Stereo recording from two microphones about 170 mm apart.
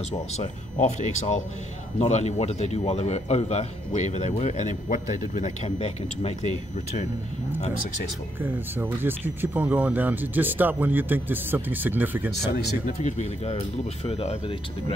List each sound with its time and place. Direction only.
0.4 s a man's voice: 45° left (ahead or behind)
8.4 s speech: 10° right (ahead or behind)
13.0 s a man's voice: 40° left (ahead or behind)